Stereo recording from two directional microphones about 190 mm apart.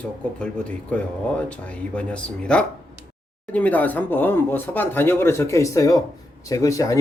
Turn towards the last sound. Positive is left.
turn(degrees=15)  # may be behind; listen again after turning